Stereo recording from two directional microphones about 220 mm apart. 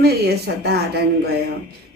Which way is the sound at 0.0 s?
45° right (ahead or behind).